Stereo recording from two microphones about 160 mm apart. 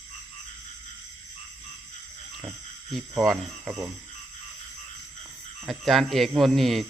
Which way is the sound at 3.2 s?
Centre (ahead or behind).